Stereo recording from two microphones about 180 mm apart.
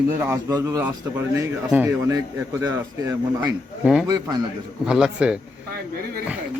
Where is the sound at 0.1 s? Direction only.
15° right (ahead or behind).